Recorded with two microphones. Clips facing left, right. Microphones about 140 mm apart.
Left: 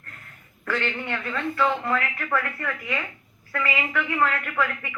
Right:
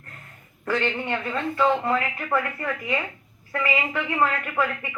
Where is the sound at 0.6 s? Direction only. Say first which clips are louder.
Right 3 dB; 25° right (ahead or behind).